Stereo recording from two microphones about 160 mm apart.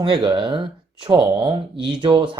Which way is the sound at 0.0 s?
30° right (ahead or behind).